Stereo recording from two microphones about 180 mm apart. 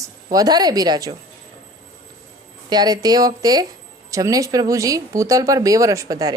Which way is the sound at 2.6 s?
20° right (ahead or behind).